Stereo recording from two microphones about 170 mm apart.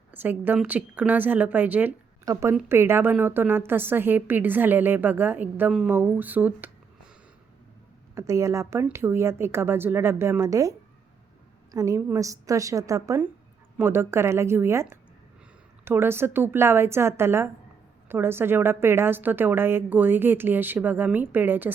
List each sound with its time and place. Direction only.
0.1 s a woman's voice: 10° right (ahead or behind)
8.1 s a woman's voice: 15° right (ahead or behind)